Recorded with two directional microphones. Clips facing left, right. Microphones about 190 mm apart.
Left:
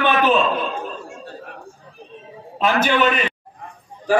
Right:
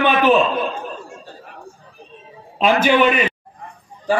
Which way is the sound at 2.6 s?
15° right (ahead or behind).